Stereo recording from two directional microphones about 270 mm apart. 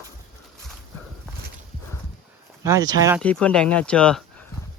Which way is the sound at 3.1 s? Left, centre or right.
Centre.